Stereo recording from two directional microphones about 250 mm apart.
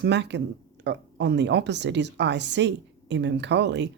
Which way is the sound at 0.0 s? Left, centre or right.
Right.